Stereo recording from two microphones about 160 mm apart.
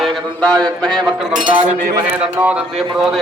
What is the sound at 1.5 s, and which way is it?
Speech, 55° right (ahead or behind).